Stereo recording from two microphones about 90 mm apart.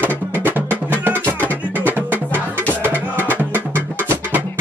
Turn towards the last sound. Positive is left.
turn(degrees=-20)  # may be behind; listen again after turning